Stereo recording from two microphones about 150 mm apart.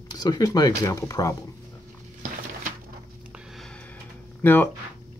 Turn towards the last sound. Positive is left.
turn(degrees=15)  # may be behind; listen again after turning